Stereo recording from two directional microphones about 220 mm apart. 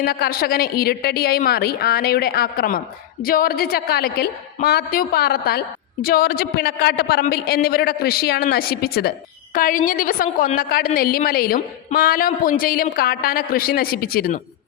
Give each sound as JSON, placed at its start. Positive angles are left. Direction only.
{"t": 0.0, "sound": "a woman's voice", "side_deg": 45}